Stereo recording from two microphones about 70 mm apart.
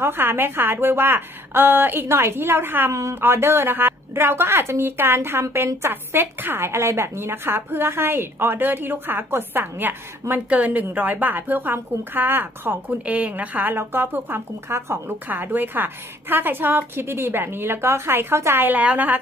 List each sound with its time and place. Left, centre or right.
0.0 s a woman's voice: right
2.9 s a woman's voice: right